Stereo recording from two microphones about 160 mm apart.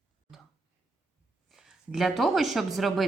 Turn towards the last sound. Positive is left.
turn(degrees=0)  # may be behind; listen again after turning